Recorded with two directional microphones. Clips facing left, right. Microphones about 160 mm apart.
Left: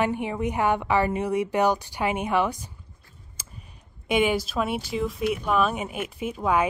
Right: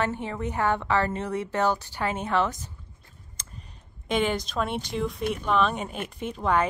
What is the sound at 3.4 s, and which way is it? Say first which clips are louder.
Computer keyboard: even; 10° left (ahead or behind).